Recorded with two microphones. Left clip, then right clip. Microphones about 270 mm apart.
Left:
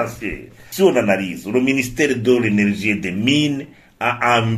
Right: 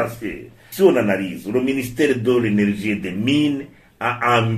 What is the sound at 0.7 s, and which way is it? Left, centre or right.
A man's voice, left.